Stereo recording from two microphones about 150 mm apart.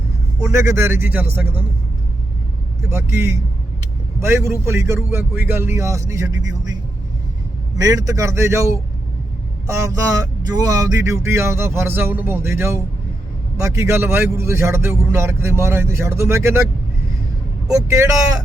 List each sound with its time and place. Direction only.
0.4 s speech: 20° right (ahead or behind)
2.9 s speech: 20° right (ahead or behind)
7.8 s speech: 20° right (ahead or behind)
17.7 s speech: 20° right (ahead or behind)